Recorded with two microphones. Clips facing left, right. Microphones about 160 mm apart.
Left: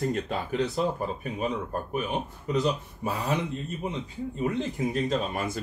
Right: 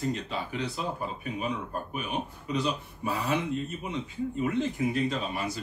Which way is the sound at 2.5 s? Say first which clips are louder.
Left 5 dB; 45° left (ahead or behind).